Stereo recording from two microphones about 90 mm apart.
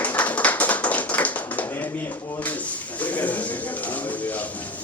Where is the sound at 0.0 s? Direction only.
15° left (ahead or behind).